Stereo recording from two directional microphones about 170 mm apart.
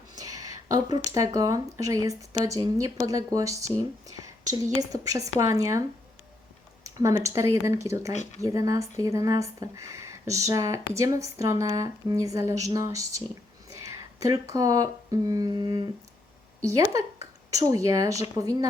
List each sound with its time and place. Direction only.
0.2 s speech: 20° right (ahead or behind)
6.8 s speech: 20° right (ahead or behind)
8.1 s speech: 40° left (ahead or behind)
8.4 s speech: 20° right (ahead or behind)